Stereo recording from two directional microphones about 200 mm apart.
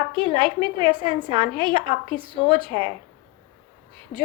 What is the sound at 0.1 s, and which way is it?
A woman's voice, 25° right (ahead or behind).